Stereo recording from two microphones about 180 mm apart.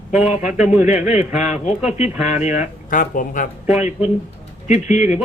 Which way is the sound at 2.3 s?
40° left (ahead or behind).